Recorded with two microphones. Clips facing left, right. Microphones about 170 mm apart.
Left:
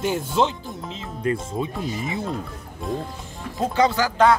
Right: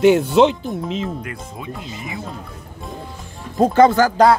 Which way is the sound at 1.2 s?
30° left (ahead or behind).